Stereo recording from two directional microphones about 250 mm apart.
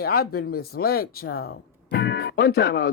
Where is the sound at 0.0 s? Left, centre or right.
Left.